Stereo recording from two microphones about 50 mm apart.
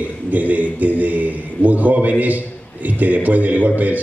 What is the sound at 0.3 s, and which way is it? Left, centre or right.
A man's voice, right.